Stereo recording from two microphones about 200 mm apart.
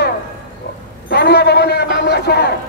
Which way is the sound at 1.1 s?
55° left (ahead or behind).